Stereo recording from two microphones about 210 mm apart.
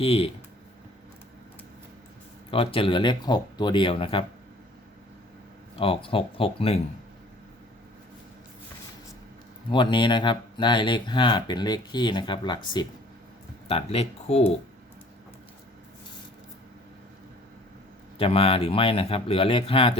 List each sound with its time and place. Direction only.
0.0 s speech: 25° left (ahead or behind)
2.5 s speech: 25° left (ahead or behind)
5.7 s speech: 25° left (ahead or behind)
9.7 s speech: 20° left (ahead or behind)
18.2 s speech: 25° left (ahead or behind)